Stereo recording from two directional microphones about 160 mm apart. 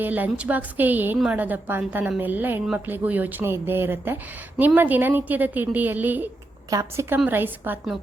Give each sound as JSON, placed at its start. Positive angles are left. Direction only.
{"t": 0.0, "sound": "a woman's voice", "side_deg": -10}